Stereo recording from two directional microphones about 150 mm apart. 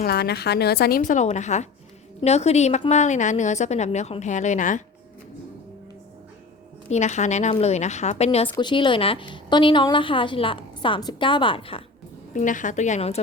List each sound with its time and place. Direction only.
0.0 s a woman's voice: 90° left; by 4.8 s 55° left (ahead or behind)
6.8 s a woman's voice: 50° left (ahead or behind)
8.5 s a woman's voice: 30° left (ahead or behind)
12.3 s a woman's voice: 55° left (ahead or behind)